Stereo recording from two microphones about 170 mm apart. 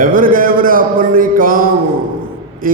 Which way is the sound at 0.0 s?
55° right (ahead or behind).